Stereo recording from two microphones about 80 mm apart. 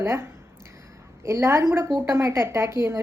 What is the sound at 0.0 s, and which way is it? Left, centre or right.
A woman's voice, right.